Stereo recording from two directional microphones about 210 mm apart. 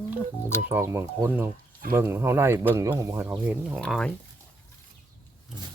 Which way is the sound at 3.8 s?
5° left (ahead or behind).